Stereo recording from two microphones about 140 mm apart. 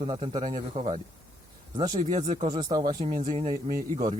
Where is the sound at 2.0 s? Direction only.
65° right (ahead or behind).